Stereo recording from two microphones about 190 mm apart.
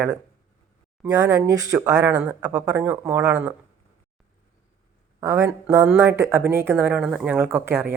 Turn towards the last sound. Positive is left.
turn(degrees=-10)  # may be behind; listen again after turning